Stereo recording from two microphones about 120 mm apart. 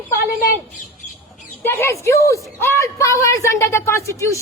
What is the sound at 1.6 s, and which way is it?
A woman's voice, 20° left (ahead or behind).